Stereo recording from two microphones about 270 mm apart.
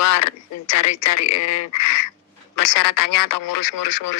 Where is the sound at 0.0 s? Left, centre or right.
Left.